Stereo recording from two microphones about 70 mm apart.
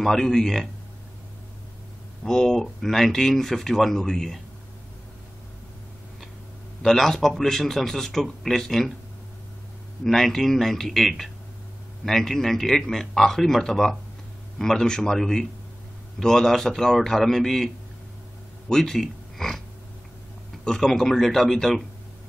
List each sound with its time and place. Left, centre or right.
0.0 s speech: centre
2.2 s speech: centre
6.8 s speech: centre
10.0 s a man's voice: centre
18.7 s speech: centre
20.6 s speech: centre